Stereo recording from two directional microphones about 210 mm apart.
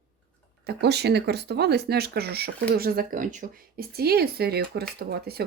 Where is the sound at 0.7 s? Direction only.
50° right (ahead or behind).